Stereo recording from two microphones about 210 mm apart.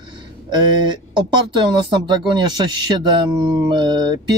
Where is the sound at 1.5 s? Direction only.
20° right (ahead or behind).